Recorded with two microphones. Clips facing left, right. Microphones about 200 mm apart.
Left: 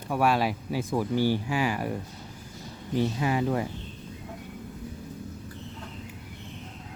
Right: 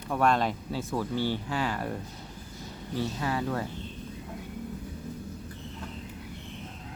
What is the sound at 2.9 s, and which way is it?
Speech, 15° left (ahead or behind).